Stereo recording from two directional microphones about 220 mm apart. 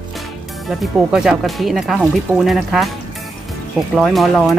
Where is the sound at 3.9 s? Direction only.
Centre (ahead or behind).